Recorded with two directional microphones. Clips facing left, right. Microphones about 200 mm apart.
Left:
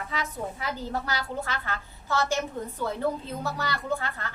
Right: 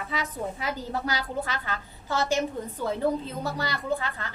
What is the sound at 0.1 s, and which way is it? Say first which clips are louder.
A woman's voice: right 3 dB; 15° right (ahead or behind).